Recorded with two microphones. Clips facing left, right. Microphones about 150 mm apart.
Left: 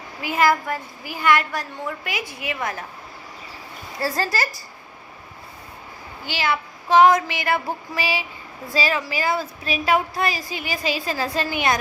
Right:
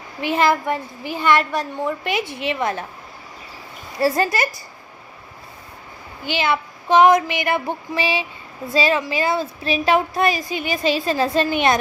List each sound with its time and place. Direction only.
0.2 s a woman's voice: 25° right (ahead or behind)
4.0 s a woman's voice: 20° right (ahead or behind)
6.2 s a woman's voice: 20° right (ahead or behind)